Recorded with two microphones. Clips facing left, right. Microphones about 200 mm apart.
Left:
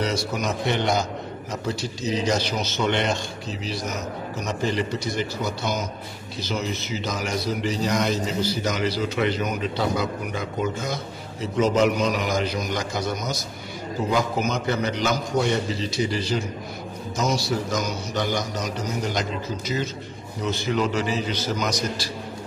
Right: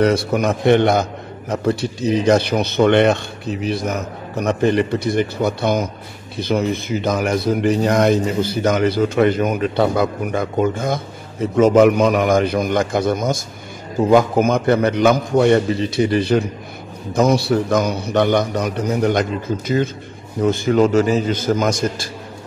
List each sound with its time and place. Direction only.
0.0 s a man's voice: 55° right (ahead or behind)